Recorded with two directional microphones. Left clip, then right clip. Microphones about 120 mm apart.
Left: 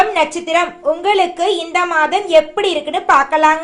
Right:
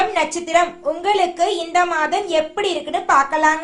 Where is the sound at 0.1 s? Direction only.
25° left (ahead or behind).